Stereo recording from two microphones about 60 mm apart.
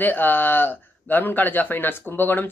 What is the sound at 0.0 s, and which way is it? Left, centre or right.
Speech, left.